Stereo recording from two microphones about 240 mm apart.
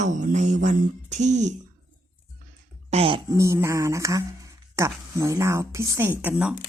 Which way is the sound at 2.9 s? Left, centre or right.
Right.